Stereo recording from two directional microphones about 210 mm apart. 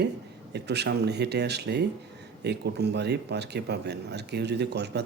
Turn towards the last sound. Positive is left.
turn(degrees=-50)  # may be behind; listen again after turning